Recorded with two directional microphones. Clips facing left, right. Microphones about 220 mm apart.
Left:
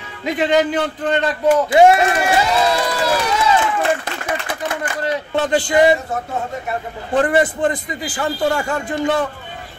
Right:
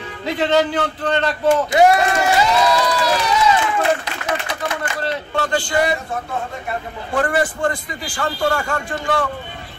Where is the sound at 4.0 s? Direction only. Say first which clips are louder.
Even; 50° left (ahead or behind).